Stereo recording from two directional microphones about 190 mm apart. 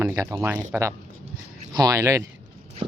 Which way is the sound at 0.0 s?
15° right (ahead or behind).